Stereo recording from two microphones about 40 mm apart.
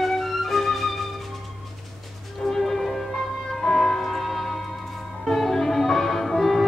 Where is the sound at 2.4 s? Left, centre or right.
Centre.